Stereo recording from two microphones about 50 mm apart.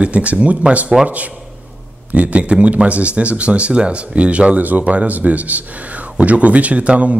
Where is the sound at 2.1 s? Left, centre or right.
Right.